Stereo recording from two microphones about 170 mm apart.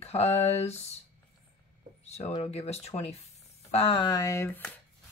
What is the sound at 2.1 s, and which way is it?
Speech, 40° left (ahead or behind).